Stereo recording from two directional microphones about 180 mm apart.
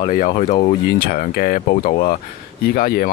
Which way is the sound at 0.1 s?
40° left (ahead or behind).